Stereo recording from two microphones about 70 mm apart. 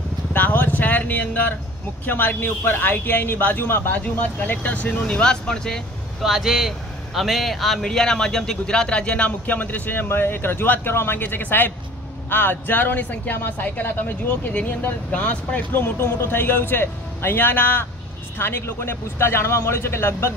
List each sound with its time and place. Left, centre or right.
0.3 s vehicle: left
2.0 s speech: left; by 5.8 s centre
6.2 s speech: centre; by 20.3 s left